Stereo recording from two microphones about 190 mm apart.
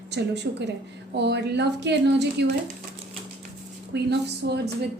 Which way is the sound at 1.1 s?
60° right (ahead or behind).